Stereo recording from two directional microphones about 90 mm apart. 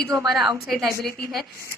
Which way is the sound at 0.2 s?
5° right (ahead or behind).